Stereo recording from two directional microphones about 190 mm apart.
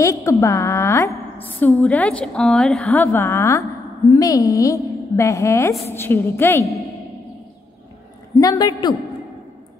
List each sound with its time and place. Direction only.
0.0 s a woman's voice: 15° left (ahead or behind)
8.4 s a woman's voice: 20° left (ahead or behind)